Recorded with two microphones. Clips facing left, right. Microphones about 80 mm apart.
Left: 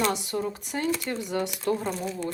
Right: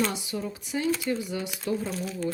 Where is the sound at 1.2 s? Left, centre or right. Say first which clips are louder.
Left 3 dB; left.